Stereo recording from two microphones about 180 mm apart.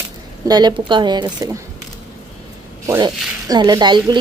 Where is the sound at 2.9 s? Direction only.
20° right (ahead or behind).